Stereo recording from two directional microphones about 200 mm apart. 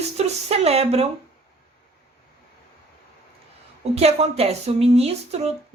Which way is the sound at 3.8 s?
30° right (ahead or behind).